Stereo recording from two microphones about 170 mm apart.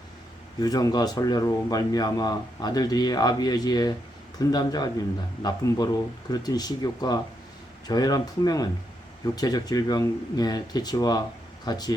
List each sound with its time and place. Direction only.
0.6 s speech: 20° left (ahead or behind)